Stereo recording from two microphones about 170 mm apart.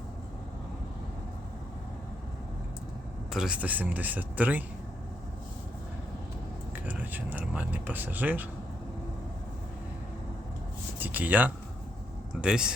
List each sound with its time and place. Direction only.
3.3 s speech: 5° right (ahead or behind)
6.8 s speech: 10° right (ahead or behind)
11.0 s speech: 10° right (ahead or behind)